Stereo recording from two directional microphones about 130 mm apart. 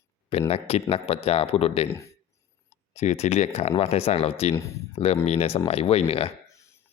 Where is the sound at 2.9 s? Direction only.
60° left (ahead or behind).